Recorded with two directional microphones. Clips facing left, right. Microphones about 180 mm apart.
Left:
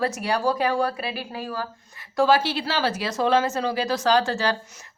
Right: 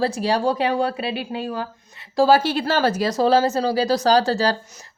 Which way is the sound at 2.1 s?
35° right (ahead or behind).